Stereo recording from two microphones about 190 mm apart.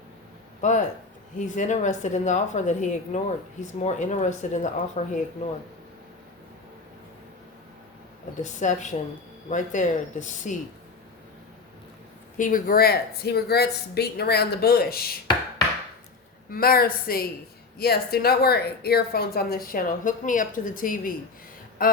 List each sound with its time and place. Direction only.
0.6 s a woman's voice: 40° left (ahead or behind)
8.4 s a woman's voice: 40° left (ahead or behind)
12.4 s a woman's voice: 45° left (ahead or behind)
16.5 s a woman's voice: 50° left (ahead or behind)